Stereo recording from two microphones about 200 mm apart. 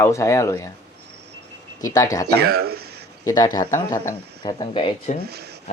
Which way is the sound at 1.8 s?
15° left (ahead or behind).